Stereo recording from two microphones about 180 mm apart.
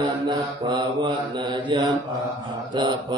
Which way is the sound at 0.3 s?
25° right (ahead or behind).